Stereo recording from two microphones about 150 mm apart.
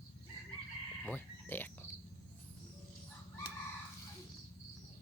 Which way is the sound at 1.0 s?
15° left (ahead or behind).